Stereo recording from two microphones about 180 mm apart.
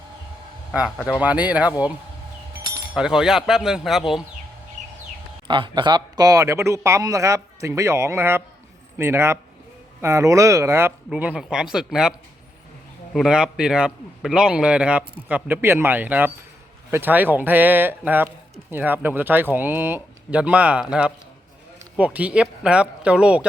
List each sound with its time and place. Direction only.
0.7 s a man's voice: 5° right (ahead or behind)
2.9 s a man's voice: 5° right (ahead or behind)
5.5 s speech: 25° right (ahead or behind); by 12.1 s 5° right (ahead or behind)
13.1 s a man's voice: 5° right (ahead or behind)